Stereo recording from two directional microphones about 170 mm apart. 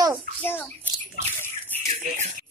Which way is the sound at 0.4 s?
10° left (ahead or behind).